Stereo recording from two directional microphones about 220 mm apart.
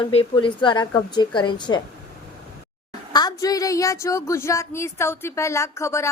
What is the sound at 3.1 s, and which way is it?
A woman's voice, 20° left (ahead or behind).